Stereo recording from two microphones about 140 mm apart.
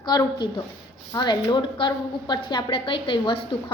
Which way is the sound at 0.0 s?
30° left (ahead or behind).